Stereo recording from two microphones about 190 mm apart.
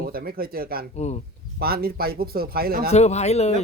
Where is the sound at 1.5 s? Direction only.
55° right (ahead or behind).